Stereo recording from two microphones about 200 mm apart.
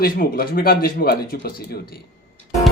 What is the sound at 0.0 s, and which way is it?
Speech, 45° left (ahead or behind).